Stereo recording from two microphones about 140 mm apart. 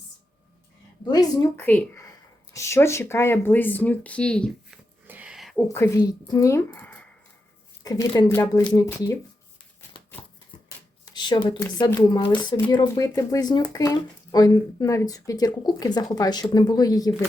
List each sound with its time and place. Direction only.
1.0 s speech: 30° left (ahead or behind)
1.5 s speech: 15° left (ahead or behind)
5.0 s a sound: 10° right (ahead or behind)
5.6 s speech: 20° left (ahead or behind)
7.9 s speech: 25° left (ahead or behind)
11.0 s speech: 30° left (ahead or behind)